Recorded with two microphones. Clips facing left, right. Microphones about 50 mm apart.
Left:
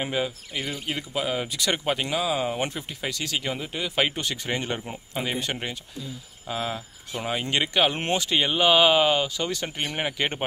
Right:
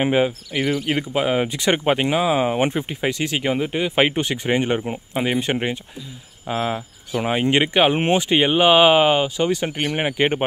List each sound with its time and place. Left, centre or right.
0.0 s speech: right